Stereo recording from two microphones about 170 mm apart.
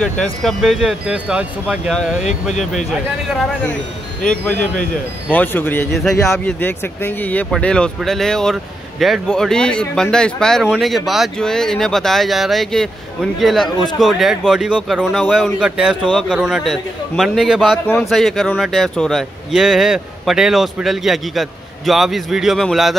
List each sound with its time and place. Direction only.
0.0 s speech: 5° left (ahead or behind)
4.2 s speech: 5° left (ahead or behind)